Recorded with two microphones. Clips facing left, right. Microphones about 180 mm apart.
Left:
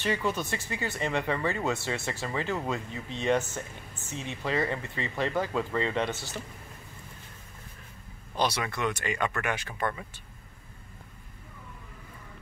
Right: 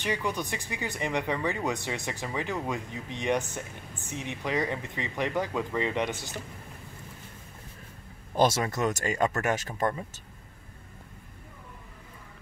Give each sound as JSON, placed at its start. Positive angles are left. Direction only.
{"t": 0.0, "sound": "speech", "side_deg": -15}
{"t": 8.4, "sound": "speech", "side_deg": -45}